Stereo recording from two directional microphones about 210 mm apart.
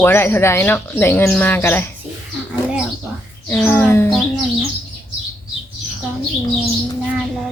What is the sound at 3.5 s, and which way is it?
Speech, 10° left (ahead or behind).